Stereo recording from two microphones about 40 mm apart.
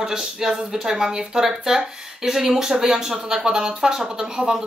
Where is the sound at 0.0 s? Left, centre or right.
Centre.